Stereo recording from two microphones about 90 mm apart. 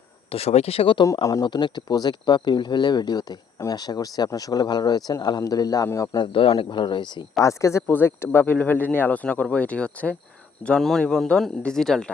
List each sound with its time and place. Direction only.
0.3 s speech: 90° left
1.2 s a man's voice: 45° left (ahead or behind)
6.1 s speech: 80° left
6.7 s speech: 55° left (ahead or behind)
7.3 s a man's voice: 35° left (ahead or behind)
7.9 s speech: 25° left (ahead or behind); by 12.1 s 5° left (ahead or behind)